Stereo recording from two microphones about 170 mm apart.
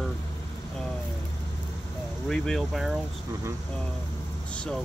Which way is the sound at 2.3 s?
5° left (ahead or behind).